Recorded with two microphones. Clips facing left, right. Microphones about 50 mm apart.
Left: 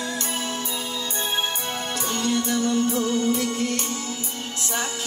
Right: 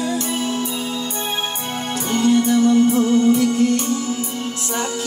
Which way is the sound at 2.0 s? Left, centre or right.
Right.